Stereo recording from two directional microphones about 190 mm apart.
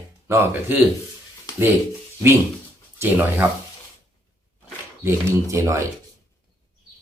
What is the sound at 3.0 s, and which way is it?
Speech, 10° right (ahead or behind).